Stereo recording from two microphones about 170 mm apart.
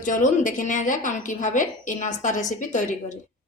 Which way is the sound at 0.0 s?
50° left (ahead or behind).